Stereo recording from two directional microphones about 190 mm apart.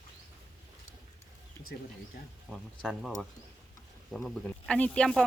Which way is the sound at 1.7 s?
60° left (ahead or behind).